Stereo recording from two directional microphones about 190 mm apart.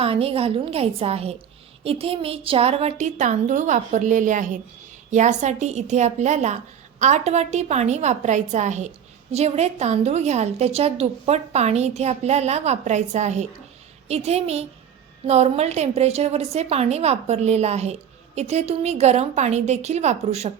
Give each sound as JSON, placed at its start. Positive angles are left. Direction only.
{"t": 0.0, "sound": "a woman's voice", "side_deg": -30}